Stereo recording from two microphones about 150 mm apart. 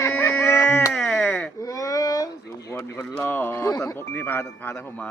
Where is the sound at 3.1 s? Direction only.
15° left (ahead or behind).